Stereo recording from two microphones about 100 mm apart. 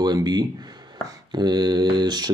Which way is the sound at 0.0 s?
45° right (ahead or behind).